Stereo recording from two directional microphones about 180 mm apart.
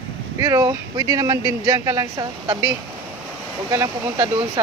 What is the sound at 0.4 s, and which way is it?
Speech, 15° right (ahead or behind).